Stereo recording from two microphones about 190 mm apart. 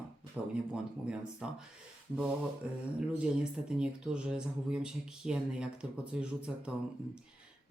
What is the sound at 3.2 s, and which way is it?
Speech, 5° right (ahead or behind).